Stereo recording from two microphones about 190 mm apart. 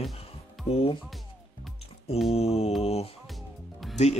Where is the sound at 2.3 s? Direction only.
35° left (ahead or behind).